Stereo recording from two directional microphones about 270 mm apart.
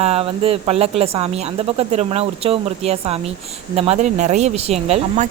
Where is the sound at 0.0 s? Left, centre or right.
Right.